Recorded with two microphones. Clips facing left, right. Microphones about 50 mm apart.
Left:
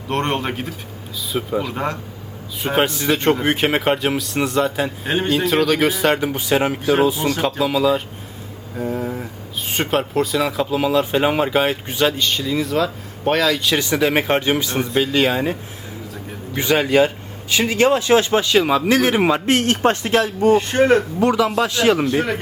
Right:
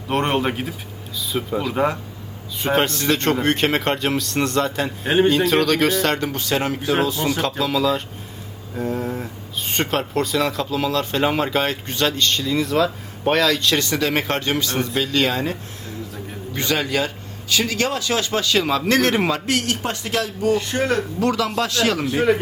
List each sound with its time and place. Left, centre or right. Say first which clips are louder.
0.1 s speech: right 1 dB; centre
1.7 s speech: right 3 dB; centre
2.6 s speech: left 1 dB; centre
16.6 s speech: left 6 dB; centre
19.3 s a man's voice: left 5 dB; left
22.0 s speech: right 1 dB; centre